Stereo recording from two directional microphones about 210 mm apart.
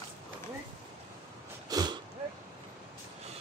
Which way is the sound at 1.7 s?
20° right (ahead or behind).